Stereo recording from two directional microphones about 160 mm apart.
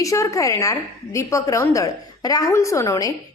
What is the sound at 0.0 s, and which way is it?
A woman's voice, 20° left (ahead or behind).